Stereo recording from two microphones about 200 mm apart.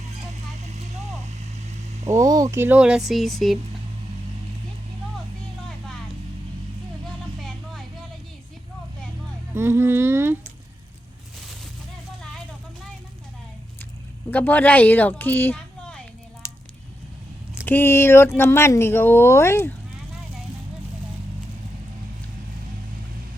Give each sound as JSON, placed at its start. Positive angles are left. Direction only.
{"t": 2.0, "sound": "speech", "side_deg": -15}
{"t": 9.6, "sound": "speech", "side_deg": -10}
{"t": 14.3, "sound": "speech", "side_deg": 10}
{"t": 17.7, "sound": "speech", "side_deg": 10}